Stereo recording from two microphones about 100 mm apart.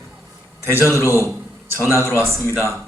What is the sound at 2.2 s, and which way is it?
Speech, 25° right (ahead or behind).